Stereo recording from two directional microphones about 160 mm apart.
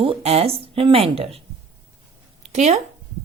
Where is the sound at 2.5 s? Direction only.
45° right (ahead or behind).